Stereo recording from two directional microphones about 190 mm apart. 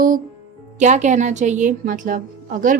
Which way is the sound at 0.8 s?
40° right (ahead or behind).